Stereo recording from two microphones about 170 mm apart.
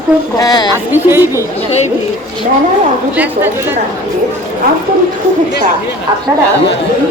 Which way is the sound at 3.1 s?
10° right (ahead or behind).